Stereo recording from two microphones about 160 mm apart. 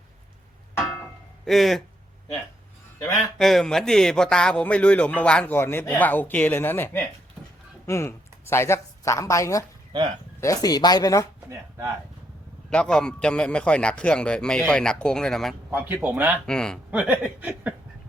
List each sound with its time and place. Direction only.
1.5 s a man's voice: centre (ahead or behind)
3.1 s speech: centre (ahead or behind); by 11.3 s 20° left (ahead or behind)
12.7 s a man's voice: 5° left (ahead or behind)
15.7 s speech: 10° right (ahead or behind)
16.5 s a man's voice: 5° left (ahead or behind)
16.9 s speech: 10° right (ahead or behind)